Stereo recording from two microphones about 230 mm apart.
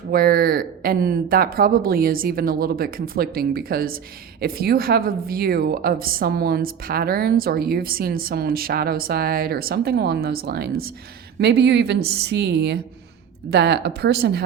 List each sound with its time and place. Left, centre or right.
0.1 s a woman's voice: right